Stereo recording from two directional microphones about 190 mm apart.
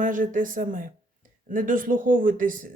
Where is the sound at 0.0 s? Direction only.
45° right (ahead or behind).